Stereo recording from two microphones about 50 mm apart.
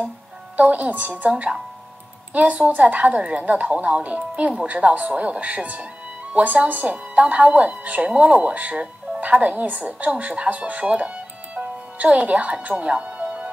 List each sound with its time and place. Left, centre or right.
0.6 s a woman's voice: right
2.3 s a woman's voice: right